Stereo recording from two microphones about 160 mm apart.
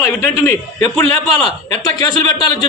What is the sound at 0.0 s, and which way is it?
Speech, 20° left (ahead or behind).